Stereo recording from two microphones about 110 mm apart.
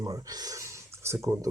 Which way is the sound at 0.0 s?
30° right (ahead or behind).